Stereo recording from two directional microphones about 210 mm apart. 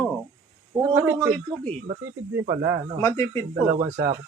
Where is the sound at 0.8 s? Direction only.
15° right (ahead or behind).